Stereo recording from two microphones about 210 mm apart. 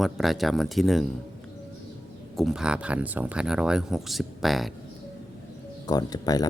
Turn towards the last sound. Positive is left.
turn(degrees=20)  # may be behind; listen again after turning